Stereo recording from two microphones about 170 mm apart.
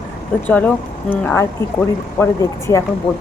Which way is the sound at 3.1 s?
5° left (ahead or behind).